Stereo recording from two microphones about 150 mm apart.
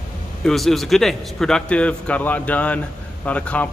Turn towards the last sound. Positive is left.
turn(degrees=10)  # may be behind; listen again after turning